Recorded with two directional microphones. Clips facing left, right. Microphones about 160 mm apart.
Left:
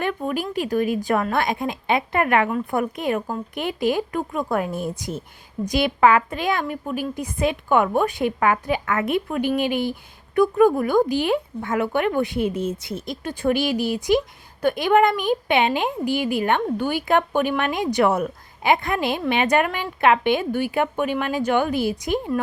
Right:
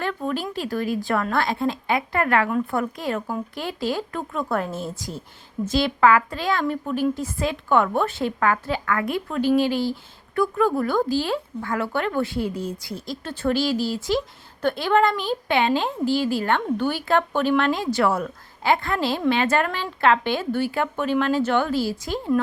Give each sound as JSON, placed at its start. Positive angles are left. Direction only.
{"t": 0.0, "sound": "a woman's voice", "side_deg": 15}